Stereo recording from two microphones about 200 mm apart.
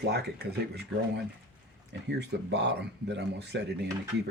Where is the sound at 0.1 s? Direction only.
55° right (ahead or behind).